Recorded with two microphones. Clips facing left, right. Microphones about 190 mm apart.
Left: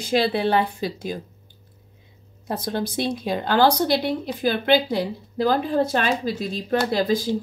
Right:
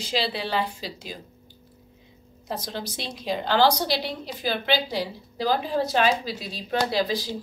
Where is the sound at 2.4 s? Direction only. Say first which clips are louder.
Left 6 dB; 55° left (ahead or behind).